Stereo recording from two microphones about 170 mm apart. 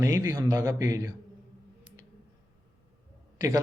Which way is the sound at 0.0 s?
15° right (ahead or behind).